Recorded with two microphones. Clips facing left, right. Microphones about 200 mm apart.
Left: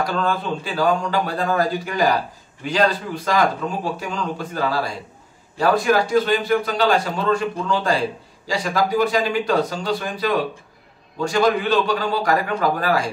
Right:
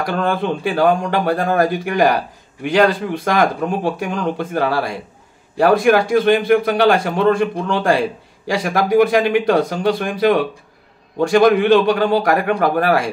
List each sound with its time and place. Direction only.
0.0 s a man's voice: 55° right (ahead or behind)